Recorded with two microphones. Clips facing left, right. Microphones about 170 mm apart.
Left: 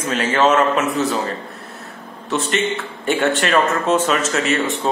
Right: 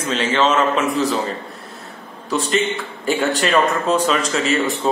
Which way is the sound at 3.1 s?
Centre (ahead or behind).